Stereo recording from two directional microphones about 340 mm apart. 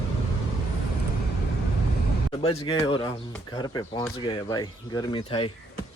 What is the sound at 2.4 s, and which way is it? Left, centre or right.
Speech, centre.